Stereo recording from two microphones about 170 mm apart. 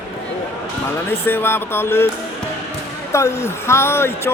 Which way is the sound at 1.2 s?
15° left (ahead or behind).